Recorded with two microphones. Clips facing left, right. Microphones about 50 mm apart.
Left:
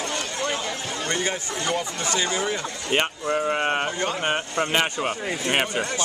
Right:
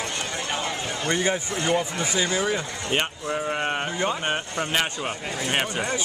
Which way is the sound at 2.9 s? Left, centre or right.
Centre.